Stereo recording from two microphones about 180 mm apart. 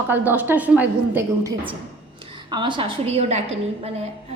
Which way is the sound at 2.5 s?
25° right (ahead or behind).